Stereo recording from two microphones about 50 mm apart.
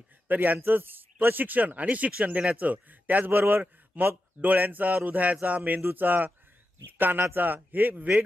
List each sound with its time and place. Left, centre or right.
0.3 s speech: right